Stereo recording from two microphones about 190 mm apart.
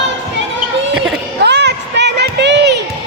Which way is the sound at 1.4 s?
65° right (ahead or behind).